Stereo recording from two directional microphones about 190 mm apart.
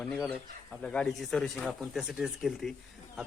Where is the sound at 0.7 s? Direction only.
5° left (ahead or behind).